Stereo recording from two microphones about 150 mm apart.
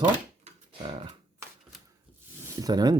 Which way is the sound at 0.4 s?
35° right (ahead or behind).